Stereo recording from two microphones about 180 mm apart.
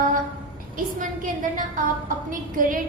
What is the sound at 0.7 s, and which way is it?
A woman's voice, 45° right (ahead or behind).